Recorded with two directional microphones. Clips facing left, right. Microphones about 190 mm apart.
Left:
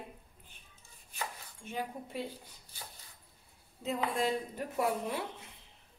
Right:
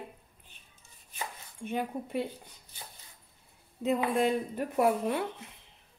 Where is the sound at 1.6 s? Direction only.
60° right (ahead or behind).